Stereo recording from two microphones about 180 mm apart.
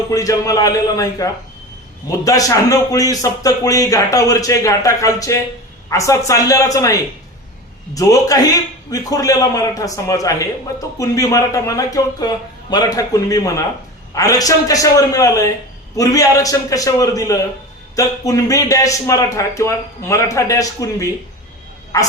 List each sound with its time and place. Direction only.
0.1 s a man's voice: 20° left (ahead or behind)
7.9 s a man's voice: 20° left (ahead or behind)